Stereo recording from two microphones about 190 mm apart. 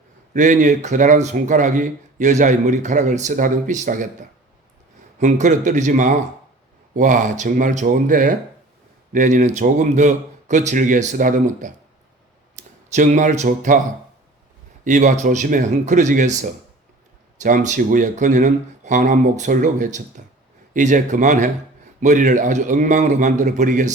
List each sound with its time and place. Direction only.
0.3 s speech: 40° right (ahead or behind)
5.2 s speech: 40° right (ahead or behind)
14.8 s speech: 40° right (ahead or behind)
17.4 s speech: 40° right (ahead or behind)